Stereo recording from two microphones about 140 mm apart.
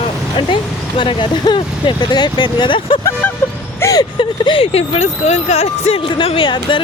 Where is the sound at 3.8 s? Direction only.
25° left (ahead or behind).